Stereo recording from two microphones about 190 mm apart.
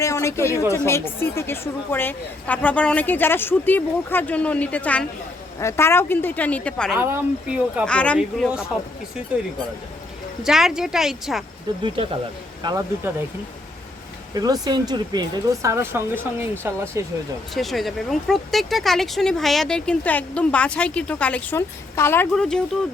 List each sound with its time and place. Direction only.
0.0 s a woman's voice: 15° left (ahead or behind)
6.9 s speech: 10° right (ahead or behind)
7.9 s a woman's voice: 5° left (ahead or behind)
10.4 s speech: centre (ahead or behind)
12.6 s speech: 20° right (ahead or behind)
14.3 s speech: 20° right (ahead or behind)
17.5 s speech: centre (ahead or behind)